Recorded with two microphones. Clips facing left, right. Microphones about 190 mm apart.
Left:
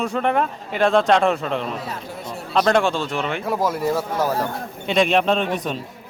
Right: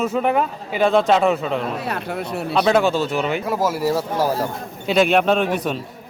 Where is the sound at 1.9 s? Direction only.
65° right (ahead or behind).